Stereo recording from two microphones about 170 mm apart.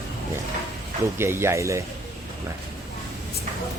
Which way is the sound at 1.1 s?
15° right (ahead or behind).